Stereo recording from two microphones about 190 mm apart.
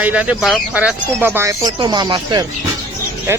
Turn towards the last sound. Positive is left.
turn(degrees=-15)  # may be behind; listen again after turning